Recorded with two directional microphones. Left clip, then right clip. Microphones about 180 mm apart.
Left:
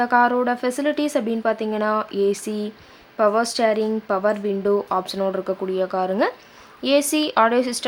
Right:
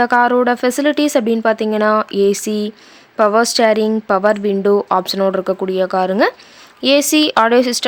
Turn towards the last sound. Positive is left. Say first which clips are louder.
# right 6 dB
turn(degrees=-35)  # may be behind; listen again after turning